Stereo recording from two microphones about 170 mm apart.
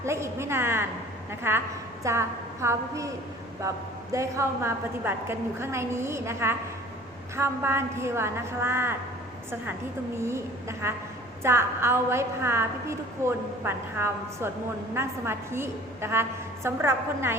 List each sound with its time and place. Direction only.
0.0 s a woman's voice: 15° right (ahead or behind)
4.1 s a woman's voice: 15° right (ahead or behind)
10.2 s a woman's voice: 15° right (ahead or behind)